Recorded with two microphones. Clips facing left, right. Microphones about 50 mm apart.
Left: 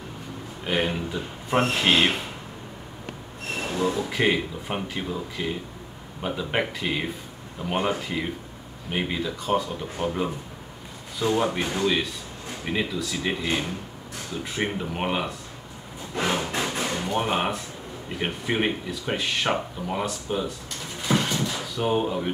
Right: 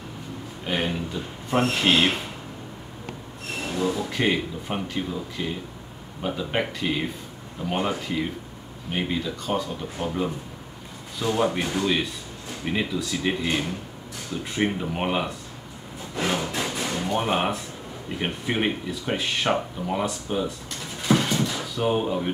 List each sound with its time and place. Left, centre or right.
0.7 s a sound: centre
1.8 s speech: centre
3.6 s speech: centre
7.7 s speech: centre
8.0 s speech: centre
11.3 s speech: centre
16.2 s a sound: centre
16.9 s speech: centre
21.0 s a sound: centre
21.3 s door: centre
21.5 s speech: centre